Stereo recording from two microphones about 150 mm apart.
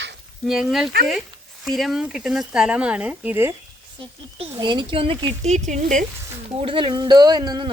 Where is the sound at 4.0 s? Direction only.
35° right (ahead or behind); by 6.0 s 55° right (ahead or behind).